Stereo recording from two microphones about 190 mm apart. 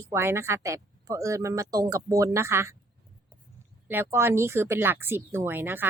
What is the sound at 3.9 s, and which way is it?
Speech, 10° right (ahead or behind).